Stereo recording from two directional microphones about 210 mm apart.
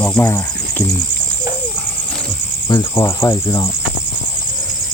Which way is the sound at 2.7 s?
20° left (ahead or behind).